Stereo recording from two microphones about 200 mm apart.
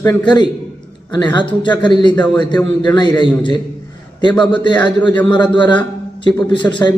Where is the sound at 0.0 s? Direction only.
15° left (ahead or behind).